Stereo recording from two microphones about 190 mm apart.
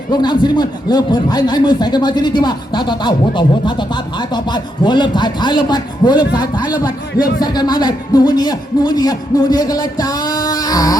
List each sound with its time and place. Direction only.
0.1 s a man's voice: 25° left (ahead or behind)